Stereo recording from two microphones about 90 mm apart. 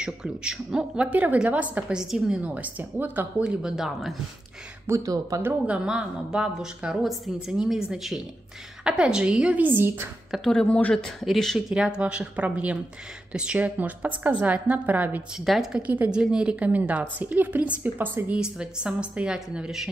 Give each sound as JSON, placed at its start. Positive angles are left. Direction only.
{"t": 0.0, "sound": "a woman's voice", "side_deg": -10}
{"t": 4.8, "sound": "speech", "side_deg": -40}
{"t": 5.7, "sound": "a woman's voice", "side_deg": -10}
{"t": 10.4, "sound": "speech", "side_deg": 10}
{"t": 12.0, "sound": "a woman's voice", "side_deg": -15}
{"t": 15.3, "sound": "a woman's voice", "side_deg": 0}
{"t": 15.9, "sound": "a woman's voice", "side_deg": -15}
{"t": 18.4, "sound": "a woman's voice", "side_deg": -10}